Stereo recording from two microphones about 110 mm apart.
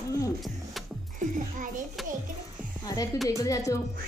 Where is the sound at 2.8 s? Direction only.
35° left (ahead or behind).